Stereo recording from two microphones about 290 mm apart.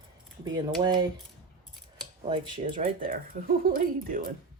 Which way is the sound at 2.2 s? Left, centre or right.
Right.